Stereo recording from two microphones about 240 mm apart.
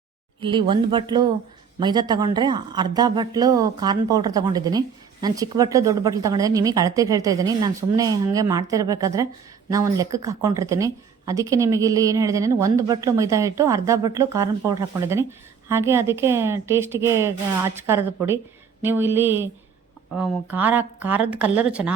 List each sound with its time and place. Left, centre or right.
0.4 s speech: centre